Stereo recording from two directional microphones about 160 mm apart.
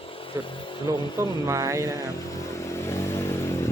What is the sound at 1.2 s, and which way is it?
Speech, 20° right (ahead or behind).